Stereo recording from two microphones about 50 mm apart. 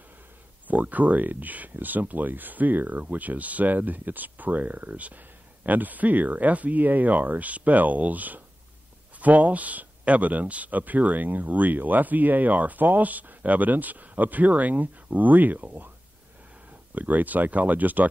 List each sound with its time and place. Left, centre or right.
0.7 s speech: right
16.9 s speech: right